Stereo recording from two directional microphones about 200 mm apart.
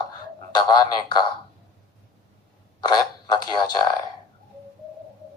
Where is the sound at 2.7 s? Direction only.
20° left (ahead or behind).